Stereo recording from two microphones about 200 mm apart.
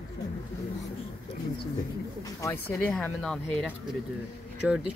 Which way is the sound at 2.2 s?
15° left (ahead or behind).